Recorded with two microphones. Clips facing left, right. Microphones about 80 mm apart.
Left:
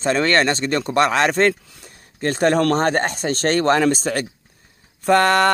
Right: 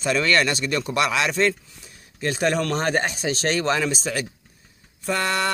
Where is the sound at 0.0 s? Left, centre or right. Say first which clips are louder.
Left 3 dB; left.